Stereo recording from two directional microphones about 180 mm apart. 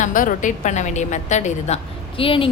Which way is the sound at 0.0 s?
45° left (ahead or behind).